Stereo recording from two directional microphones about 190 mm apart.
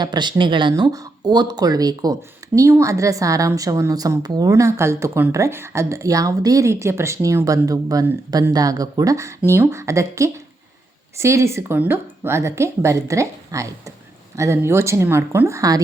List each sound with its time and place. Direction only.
0.0 s a woman's voice: 25° right (ahead or behind)